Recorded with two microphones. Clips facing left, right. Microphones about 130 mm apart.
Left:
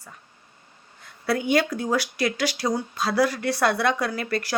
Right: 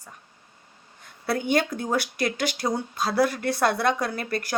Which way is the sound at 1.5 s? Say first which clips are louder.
Left 2 dB; 50° right (ahead or behind).